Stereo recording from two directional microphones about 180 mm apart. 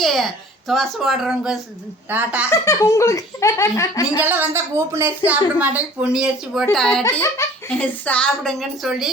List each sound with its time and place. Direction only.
0.0 s speech: centre (ahead or behind)
2.5 s speech: 15° left (ahead or behind)
4.2 s speech: 10° right (ahead or behind)
7.0 s speech: 15° left (ahead or behind); by 9.0 s centre (ahead or behind)